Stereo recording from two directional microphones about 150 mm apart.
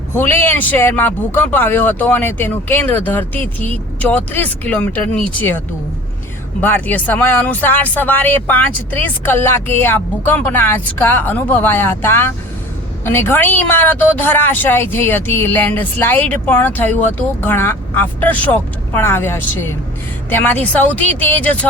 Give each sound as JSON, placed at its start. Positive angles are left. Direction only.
{"t": 0.1, "sound": "speech", "side_deg": 15}